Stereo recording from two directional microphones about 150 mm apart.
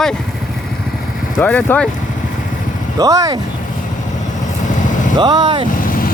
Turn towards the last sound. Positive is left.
turn(degrees=70)  # may be behind; listen again after turning